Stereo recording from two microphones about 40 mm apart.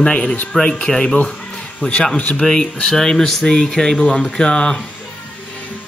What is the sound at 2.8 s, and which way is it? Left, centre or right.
Speech, centre.